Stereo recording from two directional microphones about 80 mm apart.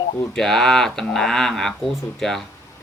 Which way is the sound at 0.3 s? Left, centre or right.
Centre.